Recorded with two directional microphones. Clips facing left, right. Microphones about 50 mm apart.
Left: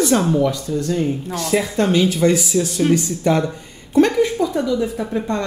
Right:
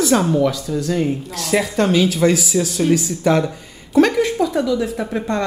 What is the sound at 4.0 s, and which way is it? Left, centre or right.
A woman's voice, right.